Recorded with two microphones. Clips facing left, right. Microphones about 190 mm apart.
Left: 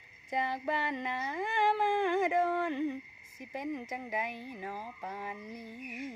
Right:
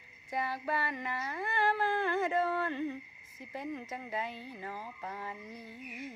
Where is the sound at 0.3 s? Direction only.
20° left (ahead or behind).